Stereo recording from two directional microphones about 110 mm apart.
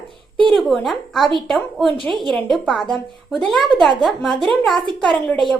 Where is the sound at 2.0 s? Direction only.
45° right (ahead or behind).